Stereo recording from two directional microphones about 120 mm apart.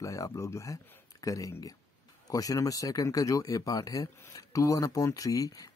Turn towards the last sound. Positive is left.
turn(degrees=30)  # may be behind; listen again after turning